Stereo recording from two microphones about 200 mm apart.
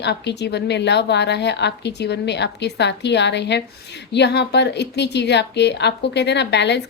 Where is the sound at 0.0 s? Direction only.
60° left (ahead or behind).